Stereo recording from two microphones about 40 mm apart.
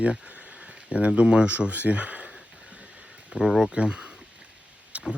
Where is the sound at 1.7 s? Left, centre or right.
Right.